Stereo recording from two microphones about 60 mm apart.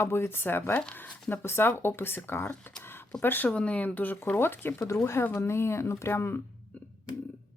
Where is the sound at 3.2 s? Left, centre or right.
Left.